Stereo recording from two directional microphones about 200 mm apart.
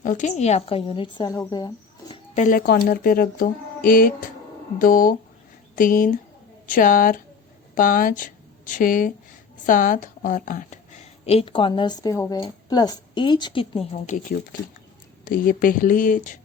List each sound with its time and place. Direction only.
0.0 s a woman's voice: 40° left (ahead or behind); by 1.7 s 20° left (ahead or behind)
2.1 s a woman's voice: 35° left (ahead or behind)